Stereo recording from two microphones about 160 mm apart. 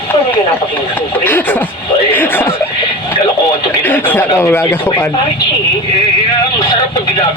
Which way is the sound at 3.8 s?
10° left (ahead or behind).